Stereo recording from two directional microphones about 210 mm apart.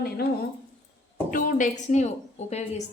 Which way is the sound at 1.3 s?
40° left (ahead or behind).